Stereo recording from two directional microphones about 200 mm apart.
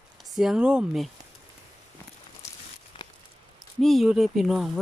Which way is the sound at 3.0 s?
20° left (ahead or behind).